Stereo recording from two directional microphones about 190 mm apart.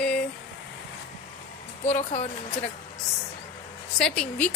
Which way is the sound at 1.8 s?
40° left (ahead or behind).